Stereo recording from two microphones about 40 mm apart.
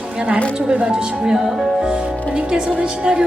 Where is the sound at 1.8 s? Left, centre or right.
Right.